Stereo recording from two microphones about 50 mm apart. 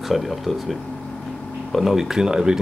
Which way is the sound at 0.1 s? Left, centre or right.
Centre.